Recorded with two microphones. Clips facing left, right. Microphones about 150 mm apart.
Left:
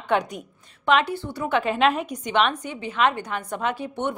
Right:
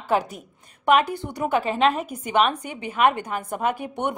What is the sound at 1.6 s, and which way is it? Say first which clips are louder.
A woman's voice: even; centre (ahead or behind).